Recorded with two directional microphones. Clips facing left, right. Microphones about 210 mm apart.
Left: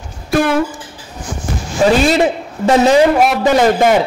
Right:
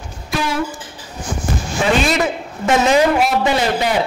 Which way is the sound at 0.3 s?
55° left (ahead or behind).